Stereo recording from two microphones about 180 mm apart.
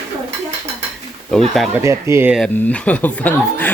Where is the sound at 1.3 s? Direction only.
Centre (ahead or behind).